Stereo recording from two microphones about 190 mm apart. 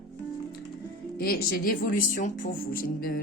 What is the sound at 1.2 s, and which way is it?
Speech, 50° left (ahead or behind).